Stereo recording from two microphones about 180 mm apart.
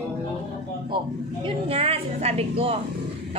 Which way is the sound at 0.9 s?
30° right (ahead or behind).